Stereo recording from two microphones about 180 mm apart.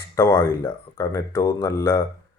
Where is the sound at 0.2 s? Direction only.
10° left (ahead or behind).